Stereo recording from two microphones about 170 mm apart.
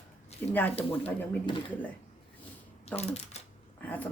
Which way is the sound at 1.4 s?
30° left (ahead or behind).